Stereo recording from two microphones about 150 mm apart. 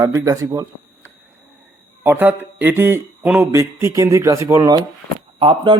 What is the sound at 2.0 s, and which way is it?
A man's voice, 10° right (ahead or behind).